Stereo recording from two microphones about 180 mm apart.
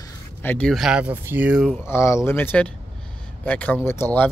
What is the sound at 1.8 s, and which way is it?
Speech, 15° left (ahead or behind).